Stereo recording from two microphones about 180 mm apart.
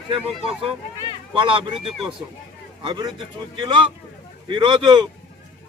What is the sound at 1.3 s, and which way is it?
Speech, 30° right (ahead or behind).